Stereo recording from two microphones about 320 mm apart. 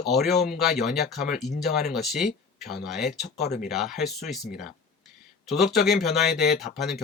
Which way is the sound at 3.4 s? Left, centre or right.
Left.